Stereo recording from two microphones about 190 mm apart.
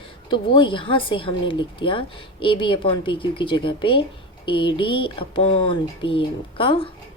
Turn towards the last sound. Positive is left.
turn(degrees=30)  # may be behind; listen again after turning